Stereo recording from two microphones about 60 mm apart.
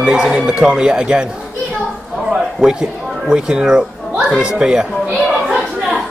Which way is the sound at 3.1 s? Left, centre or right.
Centre.